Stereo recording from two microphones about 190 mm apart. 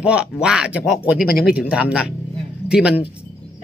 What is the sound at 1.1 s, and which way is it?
Speech, 50° left (ahead or behind).